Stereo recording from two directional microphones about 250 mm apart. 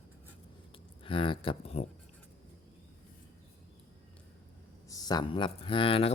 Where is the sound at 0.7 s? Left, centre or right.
Left.